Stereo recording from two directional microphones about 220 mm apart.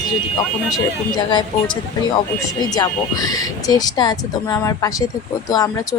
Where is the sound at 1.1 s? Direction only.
20° left (ahead or behind).